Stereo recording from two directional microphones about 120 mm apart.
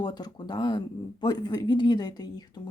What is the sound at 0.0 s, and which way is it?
Speech, 35° left (ahead or behind).